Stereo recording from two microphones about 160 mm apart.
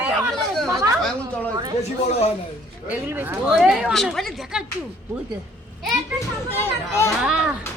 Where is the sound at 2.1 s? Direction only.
40° left (ahead or behind).